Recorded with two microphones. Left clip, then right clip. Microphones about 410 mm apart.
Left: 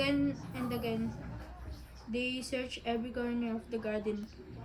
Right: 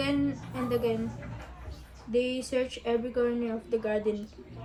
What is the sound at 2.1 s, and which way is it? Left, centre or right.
A woman's voice, centre.